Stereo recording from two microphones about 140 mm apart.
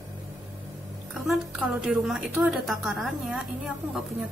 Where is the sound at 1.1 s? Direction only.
5° right (ahead or behind).